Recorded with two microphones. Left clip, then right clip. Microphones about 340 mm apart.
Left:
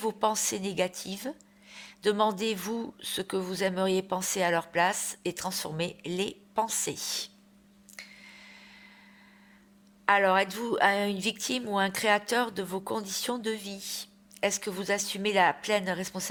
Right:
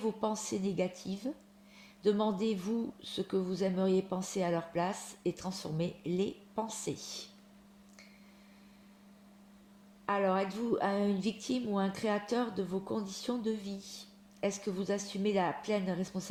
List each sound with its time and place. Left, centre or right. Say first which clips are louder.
0.2 s speech: left 7 dB; left
10.1 s speech: left 8 dB; left